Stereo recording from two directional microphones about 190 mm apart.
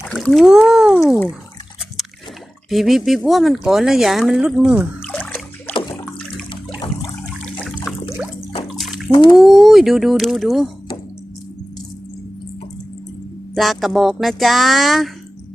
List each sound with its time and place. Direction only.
0.1 s speech: centre (ahead or behind)
2.6 s speech: centre (ahead or behind)
5.0 s splash: 10° left (ahead or behind)
6.5 s water: 20° left (ahead or behind)
7.9 s water: 5° right (ahead or behind)
8.6 s bathtub: centre (ahead or behind)
9.1 s speech: 25° left (ahead or behind)
9.4 s speech: centre (ahead or behind)
13.6 s speech: centre (ahead or behind)